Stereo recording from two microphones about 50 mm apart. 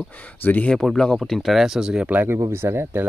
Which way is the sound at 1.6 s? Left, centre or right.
Centre.